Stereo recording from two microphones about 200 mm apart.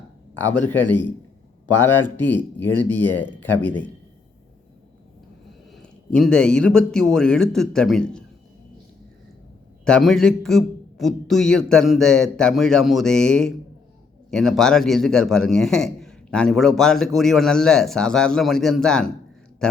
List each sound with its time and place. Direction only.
0.3 s speech: 10° left (ahead or behind)
5.7 s a man's voice: 5° left (ahead or behind)
9.8 s a man's voice: centre (ahead or behind)